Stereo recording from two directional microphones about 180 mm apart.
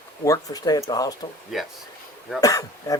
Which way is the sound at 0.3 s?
20° left (ahead or behind).